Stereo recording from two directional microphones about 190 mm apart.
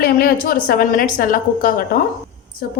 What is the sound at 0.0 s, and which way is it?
A woman's voice, 55° left (ahead or behind).